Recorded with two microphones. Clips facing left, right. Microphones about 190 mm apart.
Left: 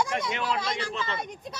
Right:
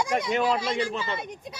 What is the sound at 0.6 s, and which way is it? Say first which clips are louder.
Speech: right 4 dB; 10° right (ahead or behind).